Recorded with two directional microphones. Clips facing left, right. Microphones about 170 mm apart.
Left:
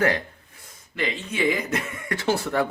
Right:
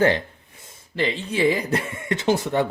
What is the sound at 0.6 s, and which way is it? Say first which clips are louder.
Speech: right 4 dB; 30° right (ahead or behind).